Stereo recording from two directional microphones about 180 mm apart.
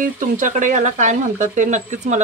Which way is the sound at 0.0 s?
45° right (ahead or behind).